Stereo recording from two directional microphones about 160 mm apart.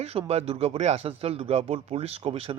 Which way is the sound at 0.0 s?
40° right (ahead or behind).